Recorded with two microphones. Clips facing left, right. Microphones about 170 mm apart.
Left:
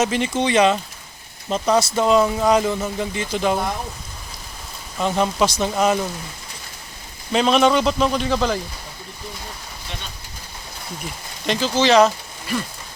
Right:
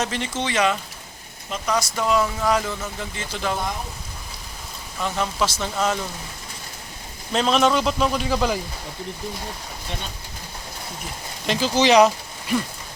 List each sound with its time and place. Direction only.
0.0 s speech: 15° left (ahead or behind)
1.5 s speech: 35° left (ahead or behind); by 3.6 s 20° left (ahead or behind)
4.9 s speech: 20° left (ahead or behind)
7.3 s a man's voice: centre (ahead or behind)
11.4 s speech: 10° right (ahead or behind)